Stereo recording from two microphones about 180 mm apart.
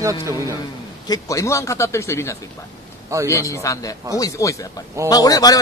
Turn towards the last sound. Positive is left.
turn(degrees=20)  # may be behind; listen again after turning